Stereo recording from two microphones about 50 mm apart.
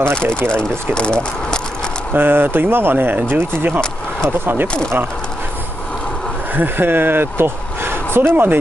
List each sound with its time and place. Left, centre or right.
0.1 s speech: centre
2.1 s speech: right
6.5 s speech: right